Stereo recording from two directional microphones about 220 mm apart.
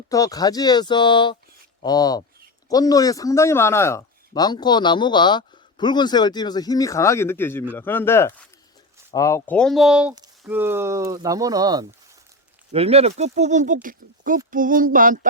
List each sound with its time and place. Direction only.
0.1 s a man's voice: 15° left (ahead or behind); by 15.3 s 35° right (ahead or behind)